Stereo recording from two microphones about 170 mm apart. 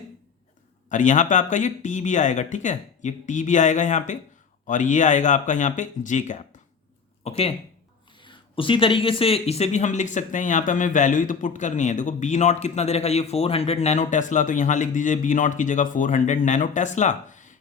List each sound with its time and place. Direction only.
0.9 s speech: 45° left (ahead or behind)
7.3 s speech: 35° left (ahead or behind)